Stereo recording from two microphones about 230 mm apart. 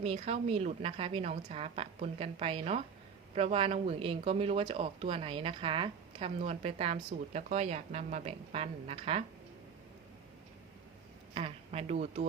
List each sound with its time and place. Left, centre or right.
0.0 s speech: right
11.3 s speech: right